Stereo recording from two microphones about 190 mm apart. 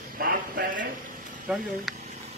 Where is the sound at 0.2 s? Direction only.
50° right (ahead or behind).